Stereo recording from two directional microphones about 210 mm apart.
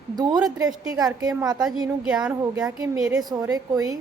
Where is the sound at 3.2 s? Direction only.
15° right (ahead or behind).